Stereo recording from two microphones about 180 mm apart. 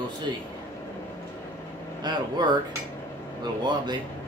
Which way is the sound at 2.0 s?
25° right (ahead or behind).